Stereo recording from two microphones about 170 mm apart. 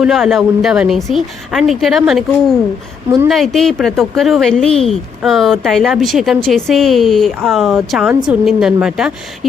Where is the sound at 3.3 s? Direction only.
Centre (ahead or behind).